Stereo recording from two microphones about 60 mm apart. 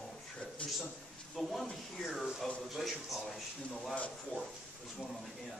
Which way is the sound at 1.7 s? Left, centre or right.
Centre.